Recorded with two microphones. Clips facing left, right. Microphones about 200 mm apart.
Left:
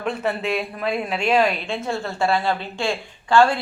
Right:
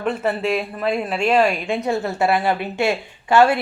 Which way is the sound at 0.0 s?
5° right (ahead or behind).